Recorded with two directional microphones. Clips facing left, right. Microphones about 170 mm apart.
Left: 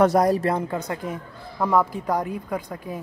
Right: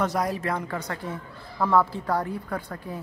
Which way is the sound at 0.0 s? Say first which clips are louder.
Left 8 dB; 55° left (ahead or behind).